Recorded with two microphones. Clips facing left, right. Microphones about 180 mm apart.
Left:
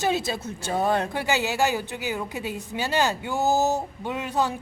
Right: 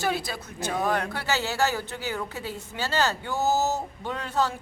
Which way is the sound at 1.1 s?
15° left (ahead or behind).